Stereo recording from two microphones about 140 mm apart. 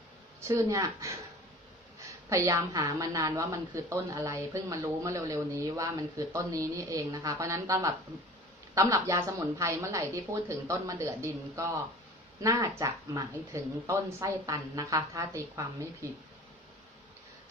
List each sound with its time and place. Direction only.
0.4 s a woman's voice: 25° right (ahead or behind)
2.3 s a woman's voice: 20° right (ahead or behind)
12.4 s a woman's voice: 25° right (ahead or behind)